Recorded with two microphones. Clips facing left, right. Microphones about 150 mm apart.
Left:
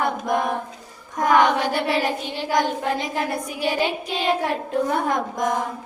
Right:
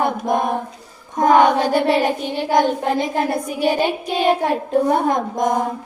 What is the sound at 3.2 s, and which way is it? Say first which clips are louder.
Child singing: right 5 dB; 45° right (ahead or behind).